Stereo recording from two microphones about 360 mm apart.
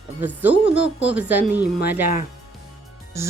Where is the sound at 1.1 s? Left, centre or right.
Centre.